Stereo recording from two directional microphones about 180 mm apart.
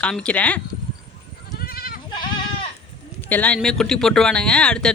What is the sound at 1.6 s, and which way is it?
Goat, 55° left (ahead or behind).